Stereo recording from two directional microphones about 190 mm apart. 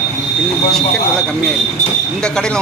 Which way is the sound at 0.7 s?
5° left (ahead or behind).